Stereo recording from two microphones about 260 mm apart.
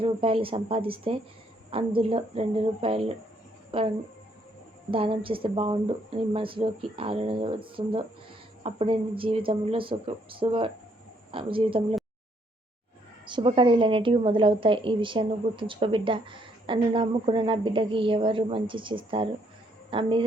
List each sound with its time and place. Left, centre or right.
0.0 s a woman's voice: right
13.2 s a woman's voice: centre